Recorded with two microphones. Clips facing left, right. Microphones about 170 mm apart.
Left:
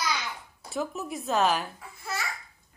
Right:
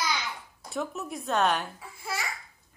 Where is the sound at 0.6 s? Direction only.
Centre (ahead or behind).